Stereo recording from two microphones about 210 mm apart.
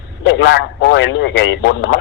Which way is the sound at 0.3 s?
60° left (ahead or behind).